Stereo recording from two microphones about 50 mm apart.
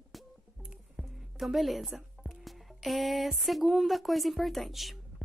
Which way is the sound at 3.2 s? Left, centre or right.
Centre.